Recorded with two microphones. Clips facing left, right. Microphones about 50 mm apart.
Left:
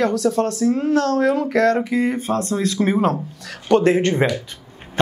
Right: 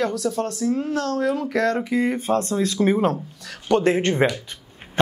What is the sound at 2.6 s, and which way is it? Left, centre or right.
Speech, left.